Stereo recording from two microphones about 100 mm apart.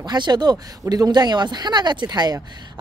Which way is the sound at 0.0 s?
45° right (ahead or behind).